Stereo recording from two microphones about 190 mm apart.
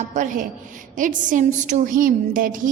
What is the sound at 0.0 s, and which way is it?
A woman's voice, 40° right (ahead or behind).